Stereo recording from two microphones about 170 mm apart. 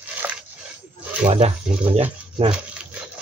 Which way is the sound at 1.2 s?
35° right (ahead or behind).